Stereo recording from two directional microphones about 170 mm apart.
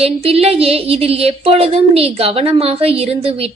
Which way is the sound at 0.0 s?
35° right (ahead or behind).